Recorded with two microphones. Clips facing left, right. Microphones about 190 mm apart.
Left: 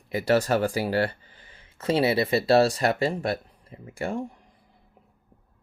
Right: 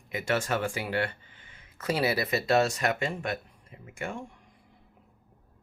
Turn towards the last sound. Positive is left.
turn(degrees=35)  # may be behind; listen again after turning